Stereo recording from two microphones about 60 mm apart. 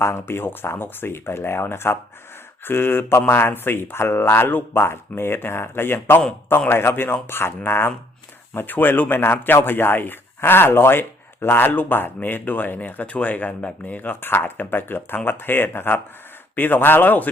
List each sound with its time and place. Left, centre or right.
0.0 s speech: left